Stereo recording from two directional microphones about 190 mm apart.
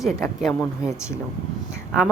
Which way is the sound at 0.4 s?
Centre (ahead or behind).